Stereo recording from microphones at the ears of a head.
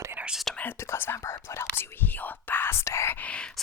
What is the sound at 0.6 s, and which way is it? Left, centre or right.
Whispering, left.